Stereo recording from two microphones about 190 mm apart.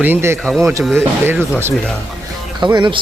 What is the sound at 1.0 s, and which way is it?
Speech, 10° right (ahead or behind).